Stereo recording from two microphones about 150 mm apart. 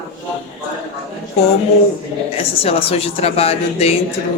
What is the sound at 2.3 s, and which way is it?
A woman's voice, 40° left (ahead or behind).